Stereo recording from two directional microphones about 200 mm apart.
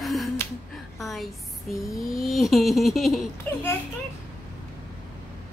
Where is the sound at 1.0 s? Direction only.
Centre (ahead or behind).